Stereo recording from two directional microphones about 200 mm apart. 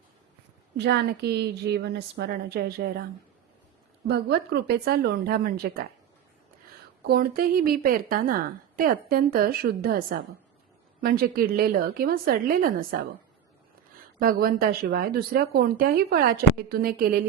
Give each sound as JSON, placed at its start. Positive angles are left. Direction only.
{"t": 0.8, "sound": "a woman's voice", "side_deg": -55}
{"t": 4.0, "sound": "a woman's voice", "side_deg": -55}
{"t": 7.1, "sound": "a woman's voice", "side_deg": -45}
{"t": 14.2, "sound": "a woman's voice", "side_deg": -45}